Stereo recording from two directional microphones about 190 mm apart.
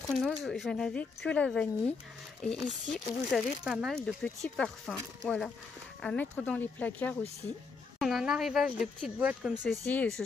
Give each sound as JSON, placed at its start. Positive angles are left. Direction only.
{"t": 0.1, "sound": "speech", "side_deg": 0}
{"t": 9.8, "sound": "speech", "side_deg": 5}